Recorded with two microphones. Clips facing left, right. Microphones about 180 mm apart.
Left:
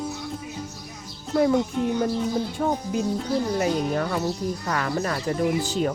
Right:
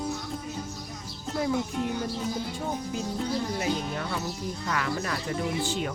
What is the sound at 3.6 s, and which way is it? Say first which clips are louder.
Speech: left 6 dB; 50° left (ahead or behind).